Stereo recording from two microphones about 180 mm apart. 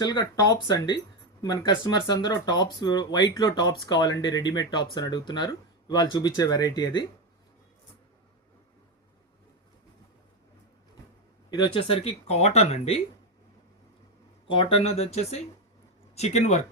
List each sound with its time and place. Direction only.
0.0 s speech: 25° left (ahead or behind)
11.5 s speech: 25° left (ahead or behind)
14.4 s speech: 30° left (ahead or behind)